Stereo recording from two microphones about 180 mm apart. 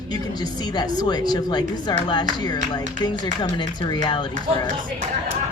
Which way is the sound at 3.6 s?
25° left (ahead or behind).